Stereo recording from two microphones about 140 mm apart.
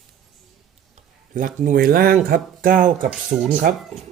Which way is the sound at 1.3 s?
70° right (ahead or behind).